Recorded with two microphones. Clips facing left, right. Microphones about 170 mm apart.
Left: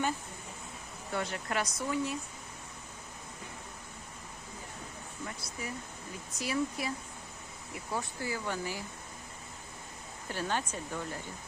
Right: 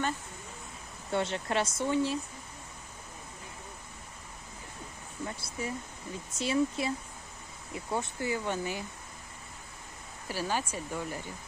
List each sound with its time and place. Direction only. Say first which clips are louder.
1.1 s speech: right 4 dB; 25° right (ahead or behind)
5.4 s speech: right 4 dB; 25° right (ahead or behind)
10.2 s speech: right 2 dB; 5° right (ahead or behind)